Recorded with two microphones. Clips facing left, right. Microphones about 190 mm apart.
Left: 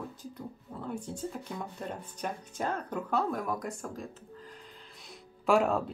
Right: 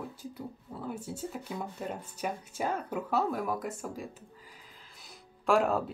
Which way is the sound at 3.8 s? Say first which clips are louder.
Right 1 dB; 10° right (ahead or behind).